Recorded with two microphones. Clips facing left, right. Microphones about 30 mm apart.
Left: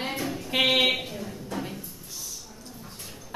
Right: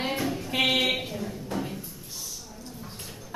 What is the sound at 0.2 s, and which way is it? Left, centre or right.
Music, centre.